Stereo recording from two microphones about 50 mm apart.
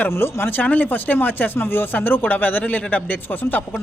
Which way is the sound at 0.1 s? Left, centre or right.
Left.